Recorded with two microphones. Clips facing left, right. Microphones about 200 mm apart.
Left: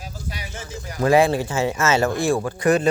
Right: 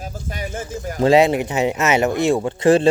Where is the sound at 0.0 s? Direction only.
50° right (ahead or behind).